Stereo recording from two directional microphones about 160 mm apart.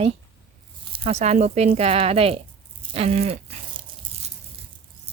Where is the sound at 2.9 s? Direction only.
40° right (ahead or behind).